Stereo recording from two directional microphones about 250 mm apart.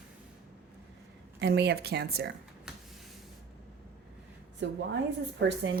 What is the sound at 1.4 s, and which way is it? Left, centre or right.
Speech, right.